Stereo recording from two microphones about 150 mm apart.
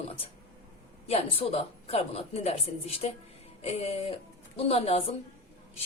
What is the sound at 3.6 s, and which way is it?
Music, 45° left (ahead or behind).